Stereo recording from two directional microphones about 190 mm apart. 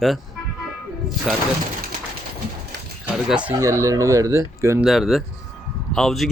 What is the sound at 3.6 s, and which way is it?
Speech, 15° right (ahead or behind).